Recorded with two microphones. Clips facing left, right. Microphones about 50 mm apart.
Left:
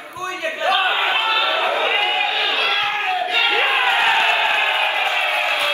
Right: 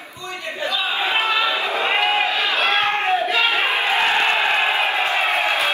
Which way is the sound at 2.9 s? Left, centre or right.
Centre.